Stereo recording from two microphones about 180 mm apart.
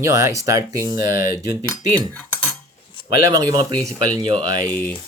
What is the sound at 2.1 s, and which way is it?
Cutlery, 10° left (ahead or behind).